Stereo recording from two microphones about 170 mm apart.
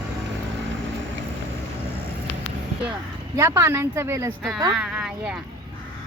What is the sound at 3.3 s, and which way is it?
Speech, 15° right (ahead or behind).